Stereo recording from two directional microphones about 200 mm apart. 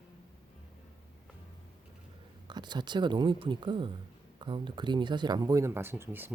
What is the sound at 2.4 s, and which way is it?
Speech, 20° right (ahead or behind).